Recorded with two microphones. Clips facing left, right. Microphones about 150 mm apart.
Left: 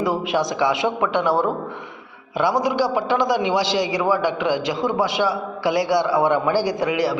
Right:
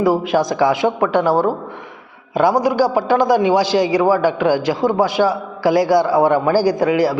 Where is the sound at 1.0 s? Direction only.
35° right (ahead or behind).